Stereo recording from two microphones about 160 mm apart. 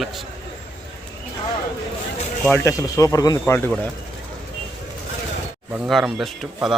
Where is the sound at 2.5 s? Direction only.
15° left (ahead or behind).